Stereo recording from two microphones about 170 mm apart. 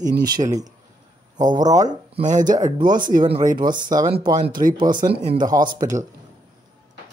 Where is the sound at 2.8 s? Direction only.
25° right (ahead or behind).